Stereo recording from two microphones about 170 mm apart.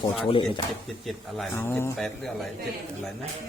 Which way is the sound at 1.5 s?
15° left (ahead or behind).